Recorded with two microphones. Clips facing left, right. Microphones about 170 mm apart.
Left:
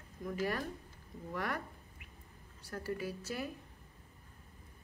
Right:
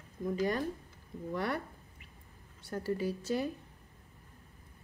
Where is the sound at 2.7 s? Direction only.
30° right (ahead or behind).